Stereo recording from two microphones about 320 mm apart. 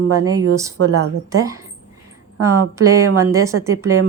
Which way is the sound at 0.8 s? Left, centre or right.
Right.